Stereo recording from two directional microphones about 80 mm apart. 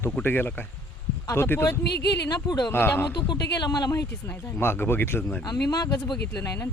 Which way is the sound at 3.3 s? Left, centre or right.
Left.